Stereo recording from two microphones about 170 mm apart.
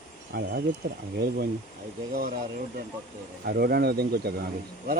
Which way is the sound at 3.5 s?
70° right (ahead or behind).